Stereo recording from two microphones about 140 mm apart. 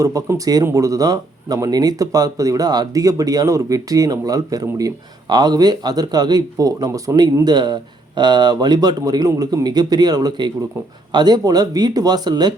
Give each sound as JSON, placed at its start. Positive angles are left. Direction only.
{"t": 0.0, "sound": "speech", "side_deg": -25}